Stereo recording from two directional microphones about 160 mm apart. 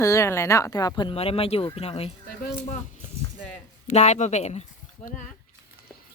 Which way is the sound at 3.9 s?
45° left (ahead or behind).